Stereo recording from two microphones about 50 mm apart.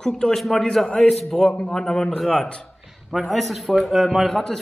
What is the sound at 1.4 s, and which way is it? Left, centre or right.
A man's voice, left.